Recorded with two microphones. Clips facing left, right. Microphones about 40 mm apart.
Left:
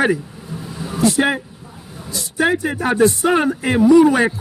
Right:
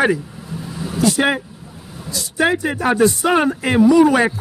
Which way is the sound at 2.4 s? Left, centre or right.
Right.